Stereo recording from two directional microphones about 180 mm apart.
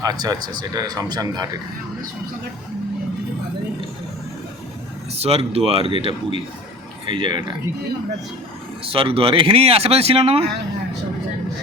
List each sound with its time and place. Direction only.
0.0 s speech: 20° right (ahead or behind)
5.1 s speech: 35° right (ahead or behind)
8.9 s speech: 30° right (ahead or behind)